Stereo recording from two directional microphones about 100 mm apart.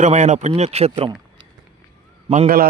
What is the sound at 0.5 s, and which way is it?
Speech, 90° right.